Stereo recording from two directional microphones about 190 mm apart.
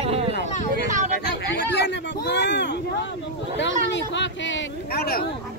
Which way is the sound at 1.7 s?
65° left (ahead or behind).